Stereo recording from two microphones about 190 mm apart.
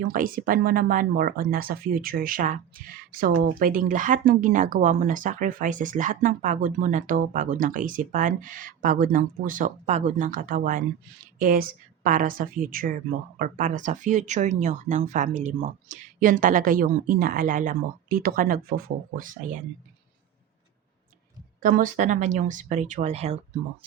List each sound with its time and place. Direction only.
0.0 s speech: 50° right (ahead or behind)
21.6 s speech: 45° right (ahead or behind)